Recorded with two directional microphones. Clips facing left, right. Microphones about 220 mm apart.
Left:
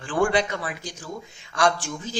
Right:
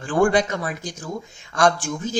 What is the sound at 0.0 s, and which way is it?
Speech, 45° right (ahead or behind).